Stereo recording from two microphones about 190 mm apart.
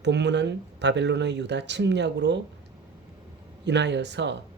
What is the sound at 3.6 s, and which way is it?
Speech, 65° right (ahead or behind).